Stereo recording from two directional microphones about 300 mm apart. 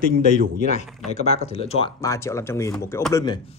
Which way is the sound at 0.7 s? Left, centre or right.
Left.